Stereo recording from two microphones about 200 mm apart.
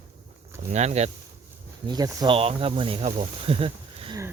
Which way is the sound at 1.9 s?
20° right (ahead or behind).